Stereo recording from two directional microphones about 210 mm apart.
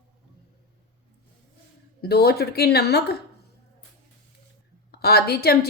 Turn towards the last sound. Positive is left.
turn(degrees=50)  # may be behind; listen again after turning